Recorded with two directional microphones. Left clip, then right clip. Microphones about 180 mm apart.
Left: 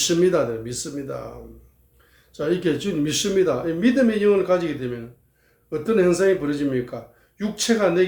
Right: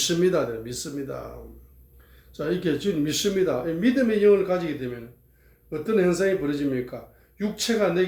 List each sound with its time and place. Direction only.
0.0 s speech: 15° left (ahead or behind)
2.3 s speech: 10° left (ahead or behind)